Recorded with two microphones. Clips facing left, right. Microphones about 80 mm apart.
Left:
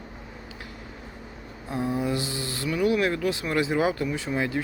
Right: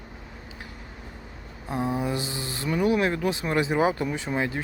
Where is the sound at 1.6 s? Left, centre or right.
Right.